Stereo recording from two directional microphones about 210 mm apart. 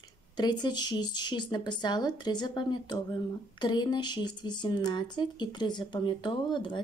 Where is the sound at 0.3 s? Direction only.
20° left (ahead or behind).